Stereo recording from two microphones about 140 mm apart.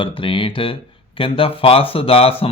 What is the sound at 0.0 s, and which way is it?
Speech, 40° left (ahead or behind).